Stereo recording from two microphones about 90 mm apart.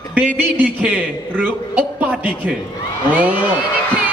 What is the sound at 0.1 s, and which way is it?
A man's voice, 15° right (ahead or behind).